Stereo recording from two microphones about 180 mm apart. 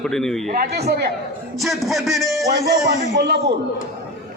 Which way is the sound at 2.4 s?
20° right (ahead or behind).